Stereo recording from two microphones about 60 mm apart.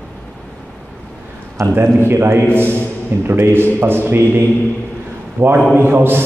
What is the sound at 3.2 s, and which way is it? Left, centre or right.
A man's voice, right.